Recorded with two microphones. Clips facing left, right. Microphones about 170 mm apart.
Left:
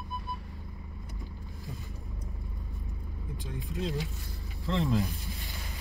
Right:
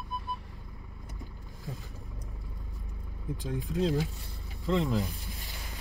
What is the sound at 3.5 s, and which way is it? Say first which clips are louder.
Speech: right 5 dB; 40° right (ahead or behind).